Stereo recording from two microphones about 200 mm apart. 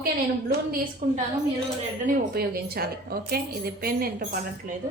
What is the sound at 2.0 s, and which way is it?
A woman's voice, 50° right (ahead or behind).